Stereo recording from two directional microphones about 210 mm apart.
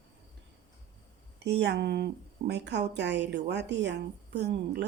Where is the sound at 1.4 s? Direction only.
55° right (ahead or behind).